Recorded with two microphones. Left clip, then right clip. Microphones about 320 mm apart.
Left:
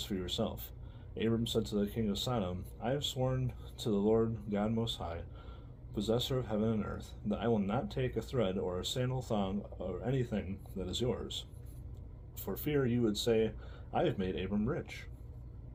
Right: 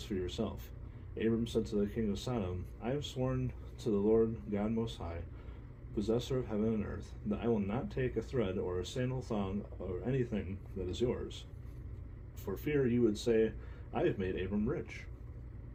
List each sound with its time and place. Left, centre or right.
0.1 s speech: left
12.5 s speech: left